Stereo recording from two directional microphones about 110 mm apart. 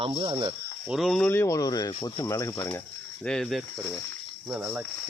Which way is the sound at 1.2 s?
25° left (ahead or behind).